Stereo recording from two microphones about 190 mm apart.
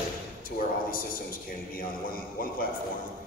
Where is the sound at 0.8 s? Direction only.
50° left (ahead or behind).